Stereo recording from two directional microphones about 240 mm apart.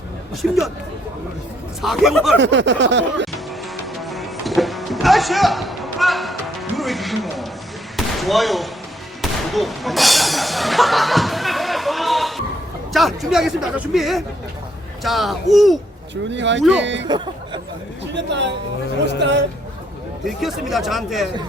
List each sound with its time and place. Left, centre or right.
0.4 s speech: centre
1.8 s speech: centre
2.4 s a sound: right
4.0 s music: centre
7.9 s basketball bounce: centre
9.2 s music: centre
12.9 s speech: centre
16.3 s a sound: right
17.1 s speech: centre
18.1 s a sound: right
20.2 s speech: centre